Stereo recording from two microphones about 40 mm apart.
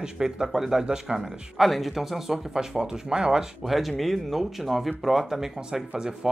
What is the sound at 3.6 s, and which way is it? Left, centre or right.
Speech, centre.